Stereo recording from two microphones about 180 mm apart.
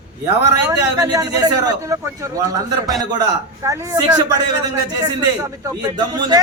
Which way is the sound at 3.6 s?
15° right (ahead or behind).